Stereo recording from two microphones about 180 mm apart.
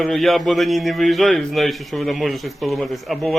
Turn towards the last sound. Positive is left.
turn(degrees=0)  # may be behind; listen again after turning